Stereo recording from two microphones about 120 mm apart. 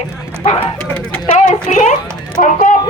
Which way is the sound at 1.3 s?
90° left.